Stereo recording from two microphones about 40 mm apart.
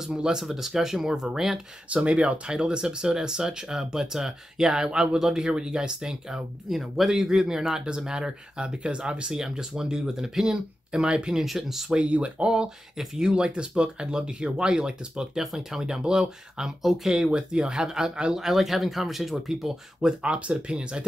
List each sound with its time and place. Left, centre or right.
0.4 s speech: centre
2.0 s speech: right
11.3 s speech: centre
11.9 s speech: right
12.4 s speech: centre
13.3 s speech: right
15.4 s speech: centre
20.2 s speech: right